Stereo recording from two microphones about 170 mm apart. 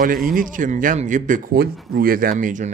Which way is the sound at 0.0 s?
55° right (ahead or behind).